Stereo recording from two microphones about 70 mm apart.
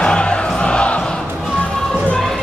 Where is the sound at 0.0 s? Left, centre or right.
Centre.